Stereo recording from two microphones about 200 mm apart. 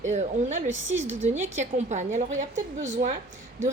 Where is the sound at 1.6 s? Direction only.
35° right (ahead or behind).